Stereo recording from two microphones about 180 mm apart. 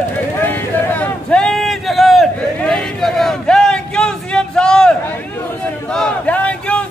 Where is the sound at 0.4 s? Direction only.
10° left (ahead or behind).